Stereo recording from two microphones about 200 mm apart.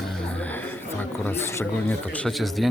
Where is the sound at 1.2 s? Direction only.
10° left (ahead or behind).